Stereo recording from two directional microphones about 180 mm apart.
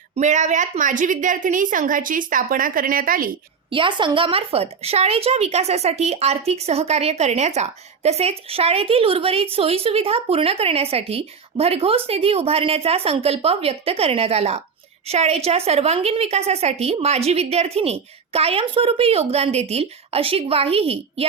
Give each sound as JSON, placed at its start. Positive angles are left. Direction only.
{"t": 0.2, "sound": "a woman's voice", "side_deg": -40}
{"t": 3.7, "sound": "speech", "side_deg": -30}